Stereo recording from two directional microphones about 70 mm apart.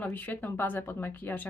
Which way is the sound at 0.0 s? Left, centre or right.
Left.